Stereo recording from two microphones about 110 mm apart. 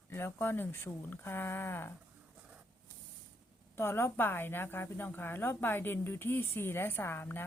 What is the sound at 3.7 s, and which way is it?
A woman's voice, 20° left (ahead or behind).